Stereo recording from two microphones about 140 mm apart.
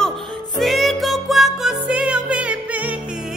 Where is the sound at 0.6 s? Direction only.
Centre (ahead or behind).